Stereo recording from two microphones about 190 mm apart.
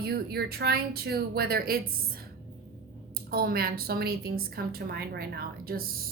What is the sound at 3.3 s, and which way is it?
A woman's voice, 55° right (ahead or behind).